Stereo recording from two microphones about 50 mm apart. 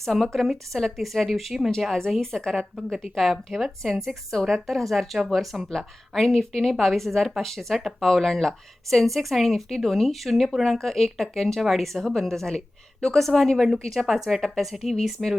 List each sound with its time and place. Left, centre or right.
0.0 s a woman's voice: centre